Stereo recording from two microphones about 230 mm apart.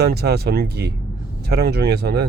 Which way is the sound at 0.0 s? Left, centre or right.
Right.